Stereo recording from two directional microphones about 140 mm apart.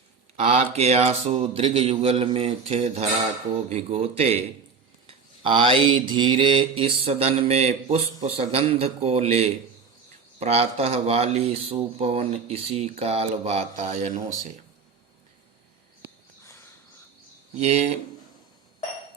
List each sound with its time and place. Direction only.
0.3 s speech: 50° right (ahead or behind)
5.0 s mantra: 40° right (ahead or behind)
8.2 s speech: 45° right (ahead or behind)
17.6 s speech: 50° right (ahead or behind)